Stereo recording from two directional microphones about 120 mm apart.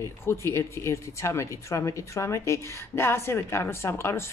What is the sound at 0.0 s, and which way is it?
Speech, 25° left (ahead or behind).